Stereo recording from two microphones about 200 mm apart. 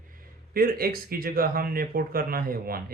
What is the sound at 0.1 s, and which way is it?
Speech, 45° right (ahead or behind).